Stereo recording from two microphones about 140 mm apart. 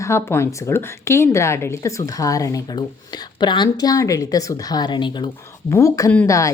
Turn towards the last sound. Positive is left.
turn(degrees=20)  # may be behind; listen again after turning